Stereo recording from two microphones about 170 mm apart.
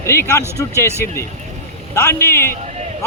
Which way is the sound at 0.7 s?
15° right (ahead or behind).